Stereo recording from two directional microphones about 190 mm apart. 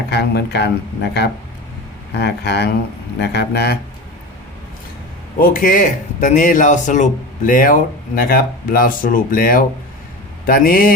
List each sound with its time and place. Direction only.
0.1 s speech: 60° left (ahead or behind)
5.4 s speech: 45° left (ahead or behind)